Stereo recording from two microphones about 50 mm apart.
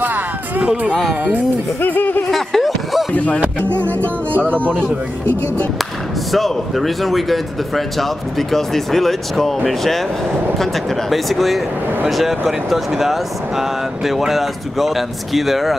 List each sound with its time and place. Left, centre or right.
0.0 s music: right
1.8 s a sound: left
2.3 s a sound: centre
3.1 s speech: left
3.3 s music: right
4.3 s speech: right
6.3 s speech: centre